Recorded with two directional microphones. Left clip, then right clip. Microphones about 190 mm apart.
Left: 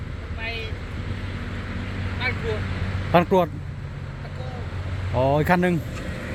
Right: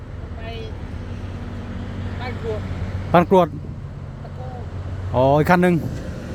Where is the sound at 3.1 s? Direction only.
15° right (ahead or behind).